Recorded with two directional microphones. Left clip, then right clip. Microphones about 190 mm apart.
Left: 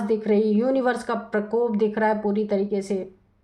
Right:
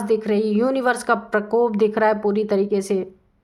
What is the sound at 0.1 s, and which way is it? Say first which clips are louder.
A woman's voice: right 2 dB; 45° right (ahead or behind).